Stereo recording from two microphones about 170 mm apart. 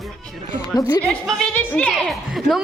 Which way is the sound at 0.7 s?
25° left (ahead or behind).